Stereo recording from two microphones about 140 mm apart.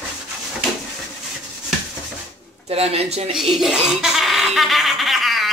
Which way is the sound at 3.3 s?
Centre (ahead or behind).